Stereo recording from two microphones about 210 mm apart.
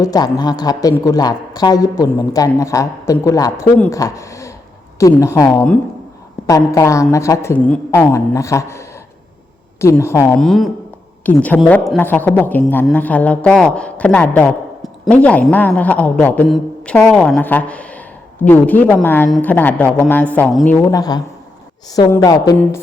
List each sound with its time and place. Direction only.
0.0 s speech: 20° left (ahead or behind)
9.8 s a woman's voice: 10° left (ahead or behind)
20.7 s speech: 15° left (ahead or behind)